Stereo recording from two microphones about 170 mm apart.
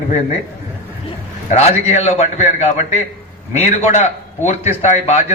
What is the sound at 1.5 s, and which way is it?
A man's voice, 40° left (ahead or behind).